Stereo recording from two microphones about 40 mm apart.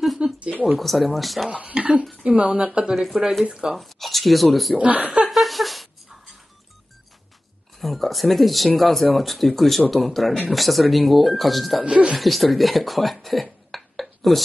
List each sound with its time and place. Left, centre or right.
0.4 s a sound: right
0.7 s speech: centre
1.5 s speech: right
2.9 s speech: centre
4.7 s speech: right
5.3 s a sound: centre
7.8 s speech: centre
11.8 s speech: right
12.2 s speech: centre